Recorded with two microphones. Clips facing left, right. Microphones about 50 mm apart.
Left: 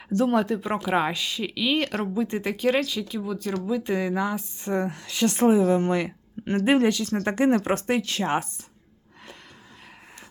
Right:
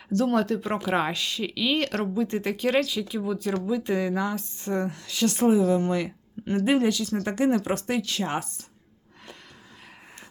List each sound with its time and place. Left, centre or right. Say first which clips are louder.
0.1 s speech: left 1 dB; centre
4.9 s speech: left 1 dB; left